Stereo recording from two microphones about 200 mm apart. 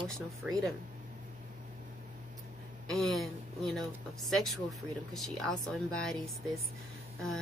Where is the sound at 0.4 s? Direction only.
5° right (ahead or behind).